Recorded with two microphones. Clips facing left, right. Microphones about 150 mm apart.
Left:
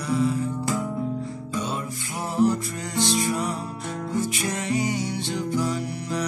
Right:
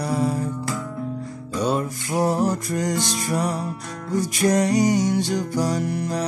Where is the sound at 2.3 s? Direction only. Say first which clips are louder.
Even; 45° right (ahead or behind).